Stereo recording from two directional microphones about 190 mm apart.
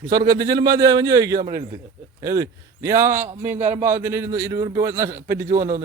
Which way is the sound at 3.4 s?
35° right (ahead or behind).